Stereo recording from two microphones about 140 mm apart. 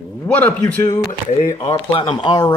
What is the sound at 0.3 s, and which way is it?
Speech, 10° left (ahead or behind).